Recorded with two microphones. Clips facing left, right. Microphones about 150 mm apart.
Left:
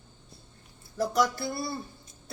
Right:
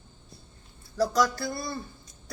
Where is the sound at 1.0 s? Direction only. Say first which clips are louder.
Right 2 dB; 20° left (ahead or behind).